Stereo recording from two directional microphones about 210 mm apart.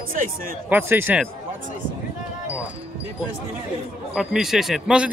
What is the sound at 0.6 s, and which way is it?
Speech, 10° right (ahead or behind).